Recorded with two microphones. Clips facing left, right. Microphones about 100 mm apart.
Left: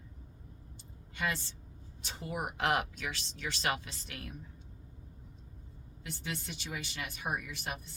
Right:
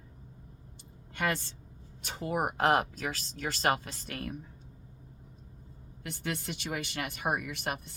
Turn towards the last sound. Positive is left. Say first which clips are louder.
# right 5 dB
turn(degrees=-60)  # may be behind; listen again after turning